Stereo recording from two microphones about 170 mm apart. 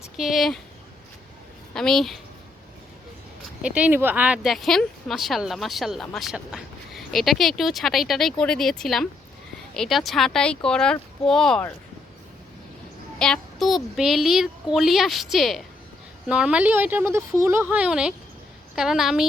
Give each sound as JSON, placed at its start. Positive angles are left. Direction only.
{"t": 0.2, "sound": "a woman's voice", "side_deg": 0}
{"t": 1.7, "sound": "a woman's voice", "side_deg": 5}
{"t": 3.6, "sound": "a woman's voice", "side_deg": -5}
{"t": 13.1, "sound": "a woman's voice", "side_deg": 5}